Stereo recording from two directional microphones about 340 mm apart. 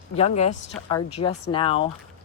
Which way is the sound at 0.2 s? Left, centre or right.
Centre.